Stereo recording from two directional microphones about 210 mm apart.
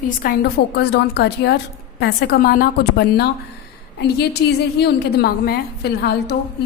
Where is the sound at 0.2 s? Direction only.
45° left (ahead or behind).